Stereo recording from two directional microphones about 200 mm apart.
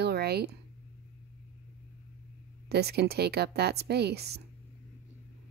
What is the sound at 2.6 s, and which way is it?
Speech, 55° right (ahead or behind).